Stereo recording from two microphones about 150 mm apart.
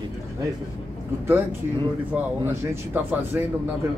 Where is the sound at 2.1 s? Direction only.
15° right (ahead or behind).